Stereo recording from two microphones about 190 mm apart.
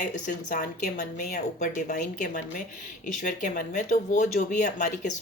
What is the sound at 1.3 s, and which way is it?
Speech, 40° left (ahead or behind).